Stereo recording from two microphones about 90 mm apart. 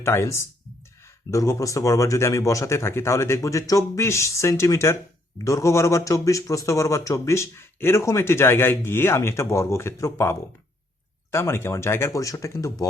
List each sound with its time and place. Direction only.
0.0 s speech: 30° left (ahead or behind)